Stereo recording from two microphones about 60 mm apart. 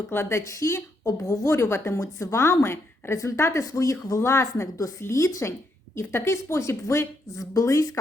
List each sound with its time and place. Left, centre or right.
0.1 s a woman's voice: left
6.0 s a woman's voice: left